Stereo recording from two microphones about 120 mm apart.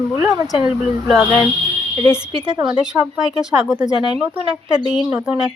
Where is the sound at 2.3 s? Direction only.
40° right (ahead or behind).